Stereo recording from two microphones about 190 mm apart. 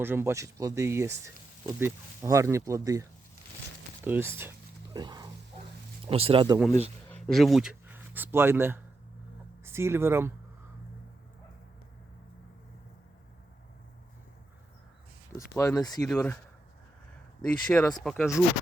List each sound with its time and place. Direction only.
0.0 s speech: 10° right (ahead or behind)
4.9 s wild animals: 20° right (ahead or behind)
6.1 s speech: 30° right (ahead or behind)
7.1 s speech: centre (ahead or behind); by 10.3 s 15° right (ahead or behind)
15.4 s speech: 15° left (ahead or behind)
17.4 s speech: 5° left (ahead or behind)